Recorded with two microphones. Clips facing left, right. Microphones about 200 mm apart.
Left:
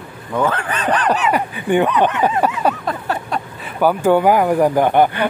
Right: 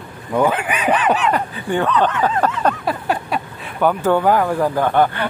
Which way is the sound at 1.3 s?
15° left (ahead or behind).